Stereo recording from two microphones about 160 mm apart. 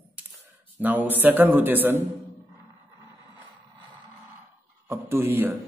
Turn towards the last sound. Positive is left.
turn(degrees=-15)  # may be behind; listen again after turning